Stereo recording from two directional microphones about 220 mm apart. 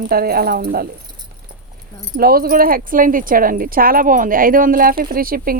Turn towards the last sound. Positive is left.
turn(degrees=-40)  # may be behind; listen again after turning